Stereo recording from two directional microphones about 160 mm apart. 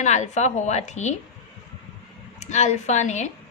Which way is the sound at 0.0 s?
45° left (ahead or behind).